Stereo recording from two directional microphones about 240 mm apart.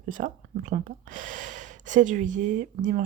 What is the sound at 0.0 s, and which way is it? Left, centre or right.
Speech, right.